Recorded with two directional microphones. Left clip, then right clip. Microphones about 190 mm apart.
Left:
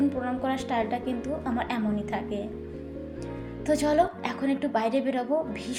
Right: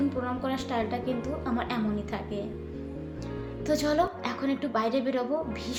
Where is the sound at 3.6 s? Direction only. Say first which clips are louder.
Left 3 dB; 15° left (ahead or behind).